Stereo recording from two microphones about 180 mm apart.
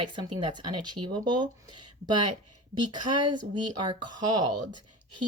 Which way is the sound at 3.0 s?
45° right (ahead or behind).